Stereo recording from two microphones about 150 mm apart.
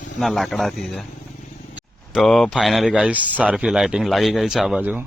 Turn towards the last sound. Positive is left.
turn(degrees=-10)  # may be behind; listen again after turning